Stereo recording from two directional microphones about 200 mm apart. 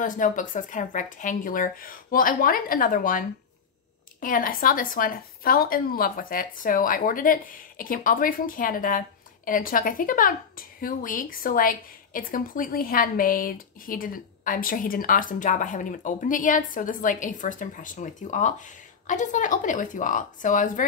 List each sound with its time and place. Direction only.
0.0 s a woman's voice: 40° left (ahead or behind)